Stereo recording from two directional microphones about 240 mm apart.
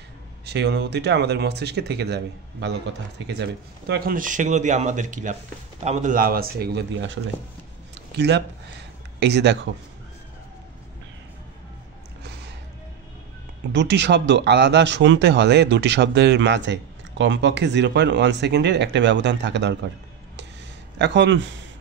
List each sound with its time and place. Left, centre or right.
0.5 s speech: right
13.7 s speech: right
21.0 s speech: right